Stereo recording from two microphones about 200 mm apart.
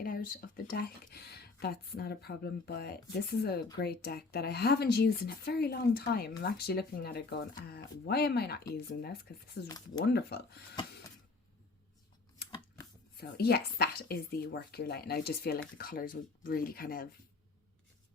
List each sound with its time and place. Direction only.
0.0 s speech: 45° left (ahead or behind)
9.6 s speech: 20° left (ahead or behind)
10.0 s speech: 55° left (ahead or behind)
12.5 s a sound: 15° left (ahead or behind)
13.1 s speech: 50° left (ahead or behind)